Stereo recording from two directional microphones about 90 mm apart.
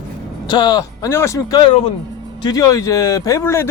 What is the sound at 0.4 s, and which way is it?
Speech, 50° left (ahead or behind).